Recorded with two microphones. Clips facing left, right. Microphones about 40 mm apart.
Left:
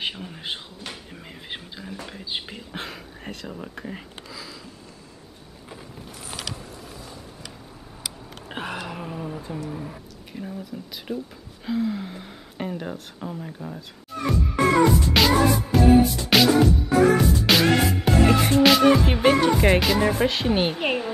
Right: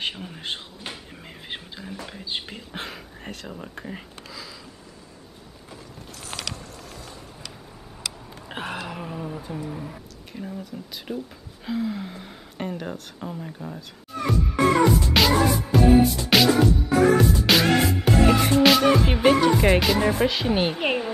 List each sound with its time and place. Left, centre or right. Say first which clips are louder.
0.0 s speech: even; centre
6.5 s vehicle: left 1 dB; centre
8.5 s a sound: even; centre
9.7 s speech: left 1 dB; centre
15.0 s music: left 1 dB; centre
20.7 s speech: even; centre